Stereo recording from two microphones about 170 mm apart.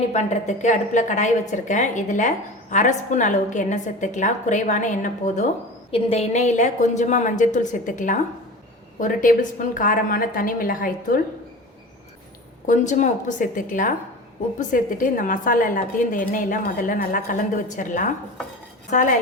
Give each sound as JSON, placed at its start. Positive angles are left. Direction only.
{"t": 0.1, "sound": "a woman's voice", "side_deg": 40}
{"t": 12.6, "sound": "a woman's voice", "side_deg": 45}